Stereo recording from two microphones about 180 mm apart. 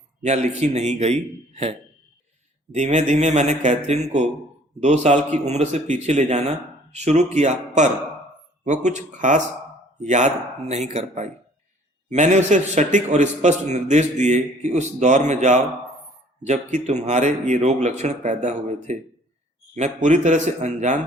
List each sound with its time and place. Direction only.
0.2 s a man's voice: 40° right (ahead or behind)
2.7 s a man's voice: 40° right (ahead or behind)